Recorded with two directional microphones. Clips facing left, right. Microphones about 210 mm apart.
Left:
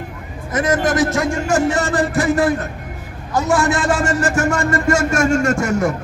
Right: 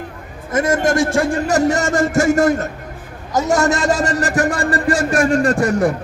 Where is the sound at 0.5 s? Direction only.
25° right (ahead or behind).